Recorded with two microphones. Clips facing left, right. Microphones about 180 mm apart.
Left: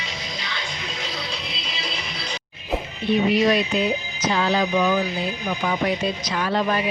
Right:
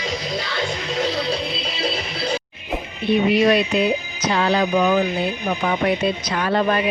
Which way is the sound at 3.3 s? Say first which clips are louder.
Right 3 dB; 65° right (ahead or behind).